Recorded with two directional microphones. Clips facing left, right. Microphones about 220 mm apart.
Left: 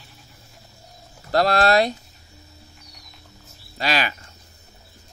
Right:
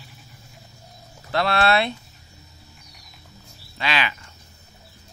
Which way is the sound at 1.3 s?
40° left (ahead or behind).